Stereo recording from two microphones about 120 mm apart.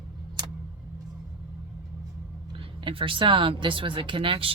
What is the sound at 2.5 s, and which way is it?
Speech, 45° right (ahead or behind).